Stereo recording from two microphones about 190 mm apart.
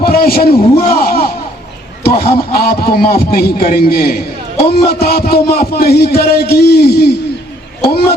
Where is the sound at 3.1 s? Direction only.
50° left (ahead or behind).